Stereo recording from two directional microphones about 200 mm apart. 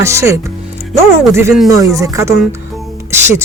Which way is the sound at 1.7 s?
15° right (ahead or behind).